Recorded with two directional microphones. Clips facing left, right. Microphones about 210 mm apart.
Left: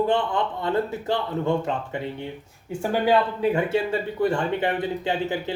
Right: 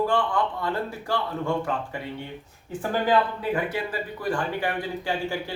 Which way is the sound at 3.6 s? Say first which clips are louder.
Left 6 dB; 25° left (ahead or behind).